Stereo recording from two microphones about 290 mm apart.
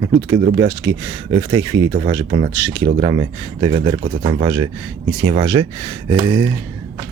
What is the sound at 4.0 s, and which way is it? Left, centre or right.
Speech, right.